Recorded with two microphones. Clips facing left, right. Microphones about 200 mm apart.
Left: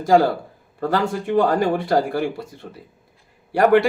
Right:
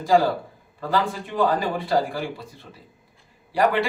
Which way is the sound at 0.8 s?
55° left (ahead or behind).